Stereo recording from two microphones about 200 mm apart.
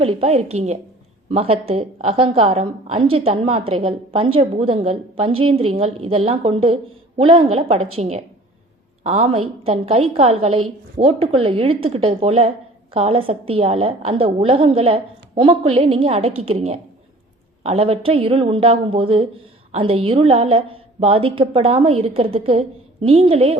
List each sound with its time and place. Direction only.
0.0 s a woman's voice: 30° right (ahead or behind)